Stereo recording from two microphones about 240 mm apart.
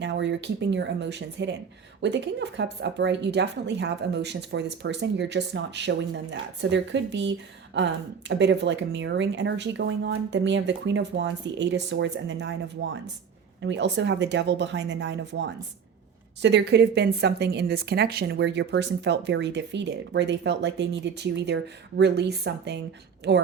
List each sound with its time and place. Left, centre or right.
0.0 s speech: right